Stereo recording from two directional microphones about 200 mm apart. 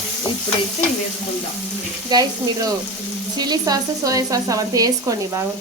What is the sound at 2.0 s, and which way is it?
Speech, 20° right (ahead or behind).